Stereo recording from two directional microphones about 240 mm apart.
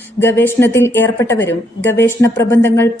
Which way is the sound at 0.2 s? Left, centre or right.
Centre.